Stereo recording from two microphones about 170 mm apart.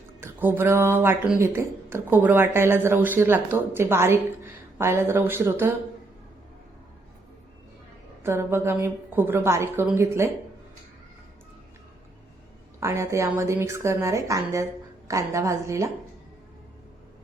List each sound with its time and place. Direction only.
0.2 s speech: 10° right (ahead or behind)
8.2 s speech: 15° right (ahead or behind)
12.8 s speech: 15° right (ahead or behind)